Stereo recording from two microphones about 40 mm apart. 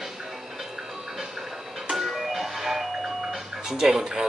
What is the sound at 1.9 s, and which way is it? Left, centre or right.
Music, centre.